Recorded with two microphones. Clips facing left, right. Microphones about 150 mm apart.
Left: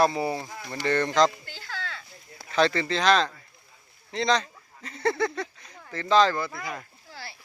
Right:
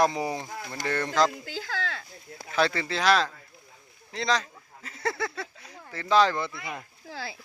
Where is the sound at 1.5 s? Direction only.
90° right.